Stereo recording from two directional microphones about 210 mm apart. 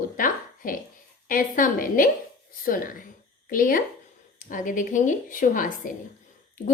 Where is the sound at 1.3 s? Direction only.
40° left (ahead or behind).